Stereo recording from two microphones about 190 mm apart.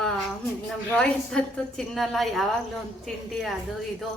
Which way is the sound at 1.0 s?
5° left (ahead or behind).